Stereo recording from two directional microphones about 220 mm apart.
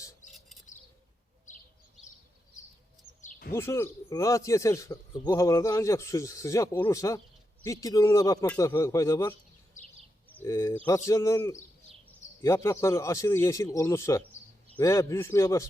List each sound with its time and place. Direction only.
3.2 s bird: 35° left (ahead or behind)
3.5 s speech: 10° left (ahead or behind)
9.8 s a sound: 35° left (ahead or behind)
10.3 s speech: 10° left (ahead or behind)